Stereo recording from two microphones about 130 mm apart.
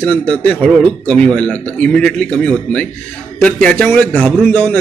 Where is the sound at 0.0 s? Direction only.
10° left (ahead or behind).